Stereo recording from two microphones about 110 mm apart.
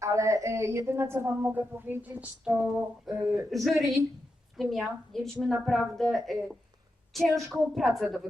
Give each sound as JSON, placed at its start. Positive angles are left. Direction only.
{"t": 0.0, "sound": "a woman's voice", "side_deg": -30}